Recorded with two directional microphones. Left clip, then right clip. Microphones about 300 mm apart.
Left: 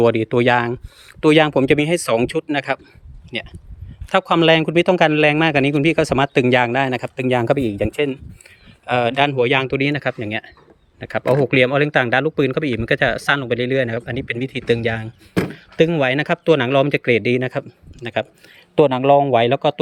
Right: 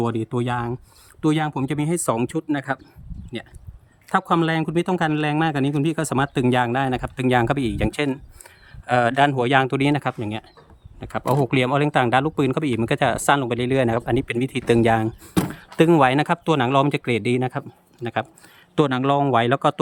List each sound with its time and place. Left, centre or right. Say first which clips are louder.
0.0 s speech: left 10 dB; centre
4.1 s speech: left 6 dB; centre
7.6 s speech: left 4 dB; right
7.9 s speech: left 3 dB; centre